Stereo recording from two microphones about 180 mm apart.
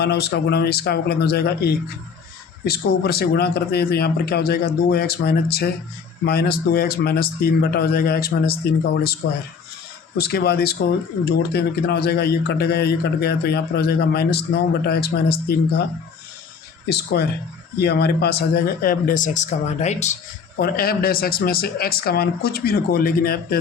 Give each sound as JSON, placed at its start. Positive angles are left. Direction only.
{"t": 0.0, "sound": "a man's voice", "side_deg": 65}
{"t": 10.2, "sound": "a man's voice", "side_deg": 60}
{"t": 16.9, "sound": "speech", "side_deg": 65}
{"t": 20.6, "sound": "a man's voice", "side_deg": 55}